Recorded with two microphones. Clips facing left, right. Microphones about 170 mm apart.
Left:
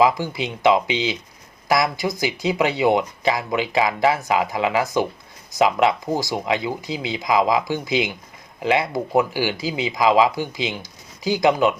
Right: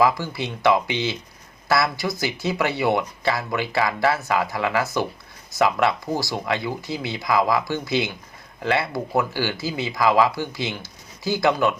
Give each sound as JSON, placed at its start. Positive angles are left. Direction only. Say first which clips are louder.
{"t": 0.0, "sound": "speech", "louder": "left 2 dB", "side_deg": 15}